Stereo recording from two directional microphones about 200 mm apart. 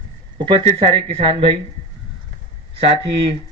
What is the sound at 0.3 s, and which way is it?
Speech, 25° right (ahead or behind).